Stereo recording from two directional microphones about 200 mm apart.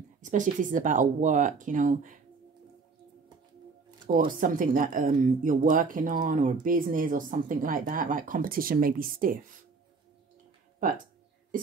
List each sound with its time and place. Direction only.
0.2 s speech: 40° right (ahead or behind)
4.1 s speech: 45° right (ahead or behind)